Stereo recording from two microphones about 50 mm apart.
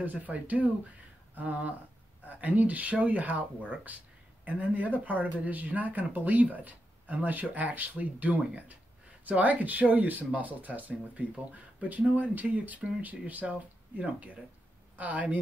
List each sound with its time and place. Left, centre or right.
0.0 s speech: right